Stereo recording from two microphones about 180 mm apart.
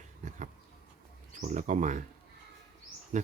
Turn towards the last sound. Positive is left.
turn(degrees=-45)  # may be behind; listen again after turning